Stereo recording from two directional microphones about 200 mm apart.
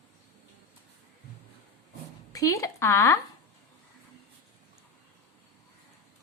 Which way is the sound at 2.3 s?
15° left (ahead or behind).